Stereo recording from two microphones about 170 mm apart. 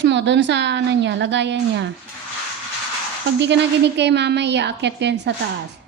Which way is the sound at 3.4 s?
90° right.